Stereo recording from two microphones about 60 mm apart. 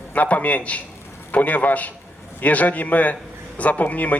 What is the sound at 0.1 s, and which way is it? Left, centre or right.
A man's voice, left.